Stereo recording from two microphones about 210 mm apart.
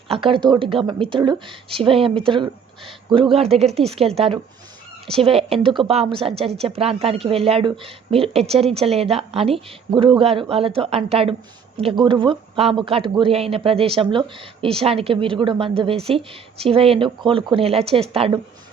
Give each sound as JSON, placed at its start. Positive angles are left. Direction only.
{"t": 0.1, "sound": "speech", "side_deg": -25}
{"t": 5.2, "sound": "speech", "side_deg": -25}